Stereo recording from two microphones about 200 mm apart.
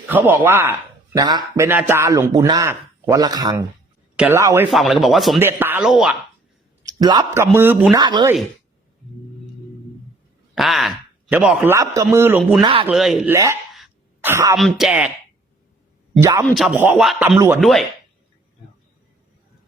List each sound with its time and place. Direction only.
0.1 s a man's voice: 10° right (ahead or behind)
4.7 s speech: centre (ahead or behind)
5.4 s a man's voice: 10° right (ahead or behind)
6.8 s a man's voice: 20° right (ahead or behind)
7.5 s a man's voice: 10° right (ahead or behind)
7.9 s speech: 20° right (ahead or behind)
10.5 s speech: centre (ahead or behind)
12.6 s speech: 25° right (ahead or behind)
12.9 s a man's voice: centre (ahead or behind)
13.7 s throat clearing: 5° right (ahead or behind)
14.8 s speech: 5° right (ahead or behind)
16.2 s a man's voice: 15° right (ahead or behind)
16.5 s a man's voice: centre (ahead or behind)